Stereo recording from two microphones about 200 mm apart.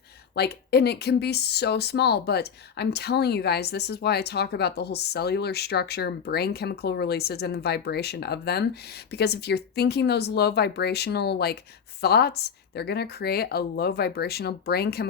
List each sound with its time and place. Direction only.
0.3 s speech: 55° left (ahead or behind)